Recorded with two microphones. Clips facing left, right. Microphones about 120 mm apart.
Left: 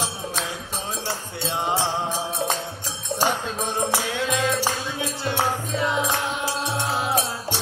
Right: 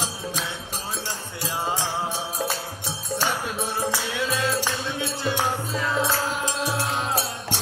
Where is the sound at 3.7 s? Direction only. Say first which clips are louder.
Left 4 dB; 20° left (ahead or behind).